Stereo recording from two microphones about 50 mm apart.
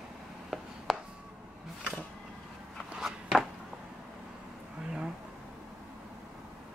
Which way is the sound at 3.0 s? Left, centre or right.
Centre.